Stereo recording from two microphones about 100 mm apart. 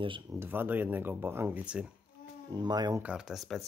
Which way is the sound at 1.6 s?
10° right (ahead or behind).